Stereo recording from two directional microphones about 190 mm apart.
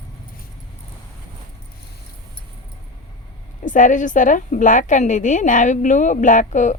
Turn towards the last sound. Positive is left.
turn(degrees=40)  # may be behind; listen again after turning